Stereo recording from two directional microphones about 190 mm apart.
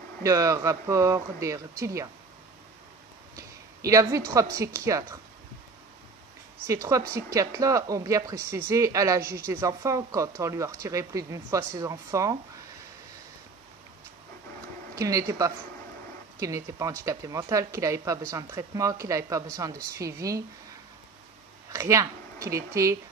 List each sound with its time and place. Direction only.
0.2 s speech: 15° right (ahead or behind)
3.3 s a sound: 15° right (ahead or behind)
4.3 s speech: 15° right (ahead or behind)
6.7 s speech: 15° right (ahead or behind)
15.0 s speech: 15° right (ahead or behind)
21.7 s speech: 15° right (ahead or behind)